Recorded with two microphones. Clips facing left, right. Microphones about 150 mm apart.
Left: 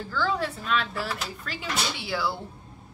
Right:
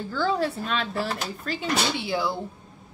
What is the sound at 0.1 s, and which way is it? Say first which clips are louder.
Speech: right 3 dB; 30° right (ahead or behind).